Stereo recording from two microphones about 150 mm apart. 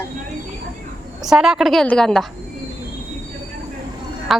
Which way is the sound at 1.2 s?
5° right (ahead or behind).